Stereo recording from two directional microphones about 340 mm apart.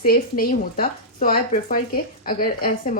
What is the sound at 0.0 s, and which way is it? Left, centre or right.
Speech, left.